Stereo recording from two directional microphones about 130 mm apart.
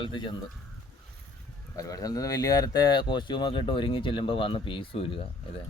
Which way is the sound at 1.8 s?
25° left (ahead or behind).